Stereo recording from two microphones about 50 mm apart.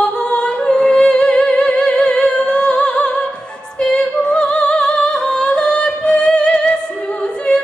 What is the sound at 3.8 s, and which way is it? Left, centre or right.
Music, centre.